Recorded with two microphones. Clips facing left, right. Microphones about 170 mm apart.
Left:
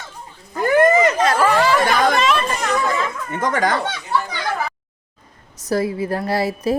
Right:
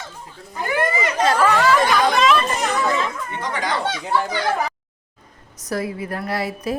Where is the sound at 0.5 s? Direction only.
45° left (ahead or behind).